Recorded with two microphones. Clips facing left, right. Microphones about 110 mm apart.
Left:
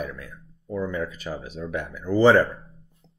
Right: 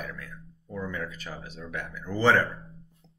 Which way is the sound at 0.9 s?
15° left (ahead or behind).